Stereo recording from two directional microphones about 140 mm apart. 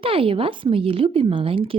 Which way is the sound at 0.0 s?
40° right (ahead or behind).